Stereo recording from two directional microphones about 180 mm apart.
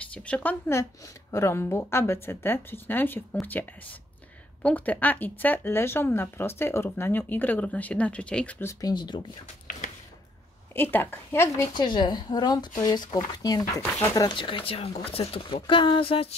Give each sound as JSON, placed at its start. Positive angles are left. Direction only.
{"t": 0.0, "sound": "speech", "side_deg": 5}
{"t": 4.6, "sound": "speech", "side_deg": 10}
{"t": 10.7, "sound": "a woman's voice", "side_deg": 10}